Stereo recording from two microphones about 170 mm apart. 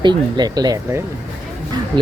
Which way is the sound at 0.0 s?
25° right (ahead or behind).